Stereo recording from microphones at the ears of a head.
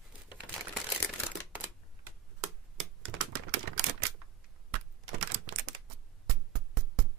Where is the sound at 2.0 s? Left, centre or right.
Right.